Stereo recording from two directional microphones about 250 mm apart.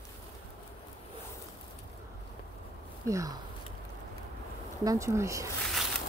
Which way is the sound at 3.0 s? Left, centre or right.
Centre.